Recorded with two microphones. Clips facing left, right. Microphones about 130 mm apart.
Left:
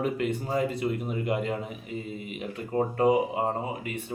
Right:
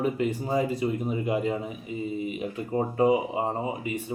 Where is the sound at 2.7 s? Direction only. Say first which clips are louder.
Even; 10° right (ahead or behind).